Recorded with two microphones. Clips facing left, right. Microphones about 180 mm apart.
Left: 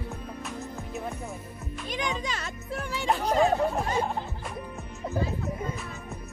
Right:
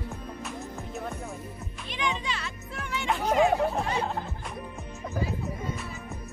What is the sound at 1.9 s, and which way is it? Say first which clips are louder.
Music: even; 40° left (ahead or behind).